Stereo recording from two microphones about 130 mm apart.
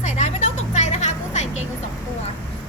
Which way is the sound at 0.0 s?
65° left (ahead or behind).